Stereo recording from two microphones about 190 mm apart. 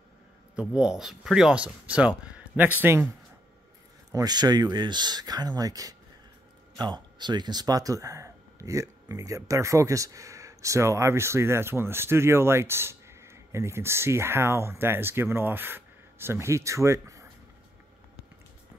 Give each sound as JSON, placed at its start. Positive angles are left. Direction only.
{"t": 0.6, "sound": "speech", "side_deg": -5}
{"t": 4.1, "sound": "speech", "side_deg": -20}